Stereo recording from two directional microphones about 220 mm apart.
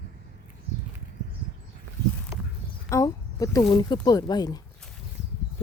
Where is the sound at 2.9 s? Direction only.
15° left (ahead or behind).